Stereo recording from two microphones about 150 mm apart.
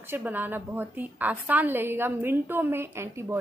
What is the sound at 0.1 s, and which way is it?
A woman's voice, 10° right (ahead or behind).